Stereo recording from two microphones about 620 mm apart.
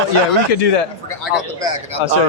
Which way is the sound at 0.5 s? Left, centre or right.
Left.